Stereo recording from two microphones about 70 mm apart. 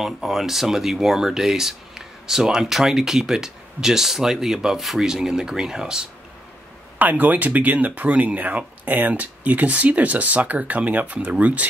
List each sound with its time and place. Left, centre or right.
0.0 s speech: centre
7.0 s speech: right